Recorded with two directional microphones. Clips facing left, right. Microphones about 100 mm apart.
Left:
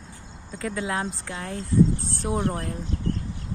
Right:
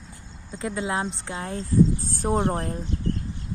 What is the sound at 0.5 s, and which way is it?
Speech, 25° right (ahead or behind).